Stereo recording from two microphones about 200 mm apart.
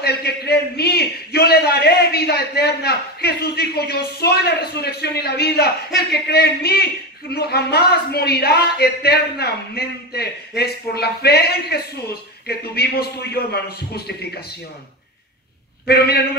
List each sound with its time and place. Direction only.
0.0 s a man's voice: 55° left (ahead or behind)
15.9 s a man's voice: 50° left (ahead or behind)